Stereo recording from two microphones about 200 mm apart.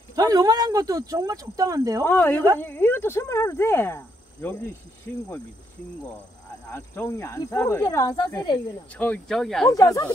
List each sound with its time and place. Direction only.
0.1 s speech: 20° right (ahead or behind)
2.0 s speech: 10° left (ahead or behind)
6.7 s speech: 10° left (ahead or behind)
9.7 s speech: 15° left (ahead or behind)